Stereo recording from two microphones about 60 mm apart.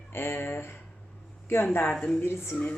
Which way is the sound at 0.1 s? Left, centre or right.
Left.